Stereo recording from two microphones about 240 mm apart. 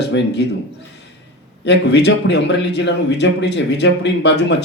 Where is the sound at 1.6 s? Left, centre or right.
Left.